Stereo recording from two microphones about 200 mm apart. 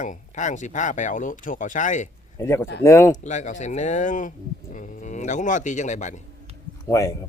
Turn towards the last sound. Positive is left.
turn(degrees=15)  # may be behind; listen again after turning